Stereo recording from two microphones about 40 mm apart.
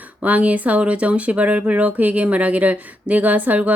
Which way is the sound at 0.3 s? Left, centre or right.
Right.